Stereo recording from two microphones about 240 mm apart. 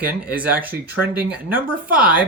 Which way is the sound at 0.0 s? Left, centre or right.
Centre.